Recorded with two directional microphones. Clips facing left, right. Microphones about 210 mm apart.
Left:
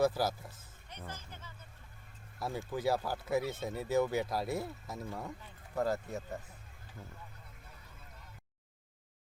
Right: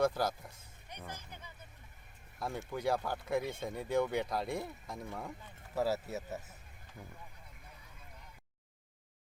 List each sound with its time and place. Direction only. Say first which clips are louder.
0.0 s speech: left 1 dB; 5° left (ahead or behind)
0.9 s music: even; 15° right (ahead or behind)
2.4 s speech: left 2 dB; 5° left (ahead or behind)
7.0 s speech: even; 15° right (ahead or behind)